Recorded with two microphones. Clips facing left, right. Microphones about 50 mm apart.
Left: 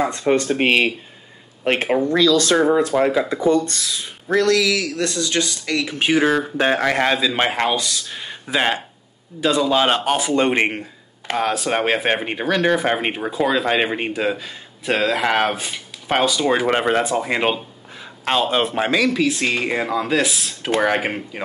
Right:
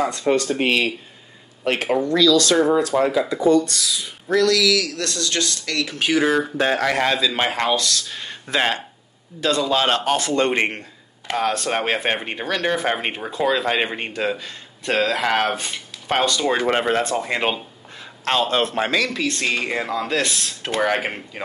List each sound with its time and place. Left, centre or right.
0.4 s a man's voice: left; by 21.4 s centre